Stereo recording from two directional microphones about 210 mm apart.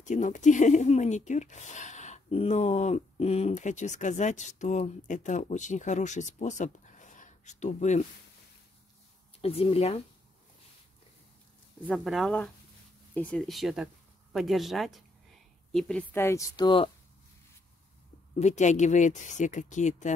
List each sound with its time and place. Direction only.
0.0 s speech: 35° left (ahead or behind)
9.4 s speech: 30° left (ahead or behind)
11.8 s speech: centre (ahead or behind); by 16.9 s 20° left (ahead or behind)
18.3 s speech: 35° left (ahead or behind)